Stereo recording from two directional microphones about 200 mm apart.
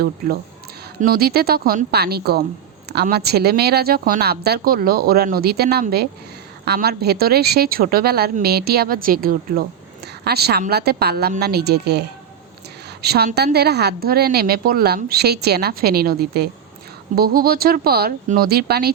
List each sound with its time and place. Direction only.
1.0 s a woman's voice: 50° right (ahead or behind)